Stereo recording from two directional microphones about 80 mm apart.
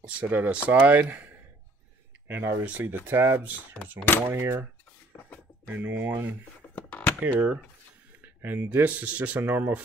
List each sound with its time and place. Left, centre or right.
0.0 s speech: centre
5.7 s speech: right
6.7 s a sound: centre
7.2 s speech: centre